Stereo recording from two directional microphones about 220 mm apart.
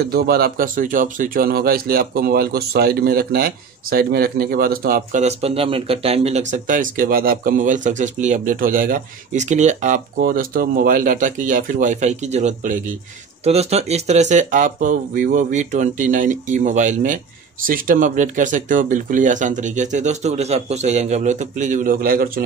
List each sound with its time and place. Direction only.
0.1 s speech: 45° right (ahead or behind)